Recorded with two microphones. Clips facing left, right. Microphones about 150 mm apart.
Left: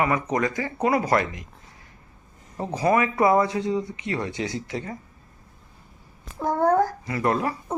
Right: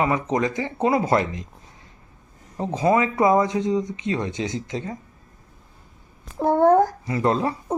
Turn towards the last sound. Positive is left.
turn(degrees=-25)  # may be behind; listen again after turning